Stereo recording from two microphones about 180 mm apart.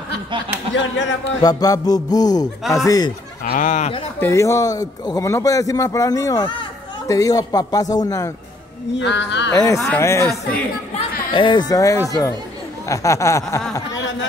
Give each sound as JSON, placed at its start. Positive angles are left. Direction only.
{"t": 1.4, "sound": "a man's voice", "side_deg": 20}
{"t": 3.4, "sound": "speech", "side_deg": 50}
{"t": 4.2, "sound": "a man's voice", "side_deg": 15}
{"t": 9.0, "sound": "speech", "side_deg": 75}
{"t": 9.5, "sound": "a sound", "side_deg": 15}
{"t": 11.3, "sound": "a man's voice", "side_deg": 25}
{"t": 12.8, "sound": "a sound", "side_deg": 15}